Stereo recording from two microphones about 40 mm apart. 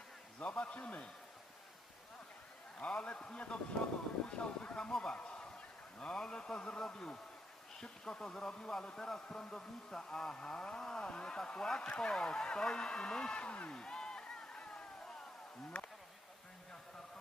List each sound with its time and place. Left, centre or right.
0.5 s a man's voice: left
2.7 s speech: left
4.9 s speech: centre
5.1 s a sound: left
6.0 s speech: left
13.7 s a sound: left